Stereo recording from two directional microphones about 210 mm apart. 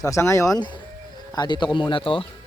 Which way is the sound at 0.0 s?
15° left (ahead or behind).